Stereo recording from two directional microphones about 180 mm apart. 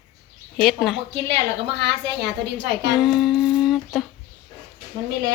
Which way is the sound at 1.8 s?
75° right (ahead or behind).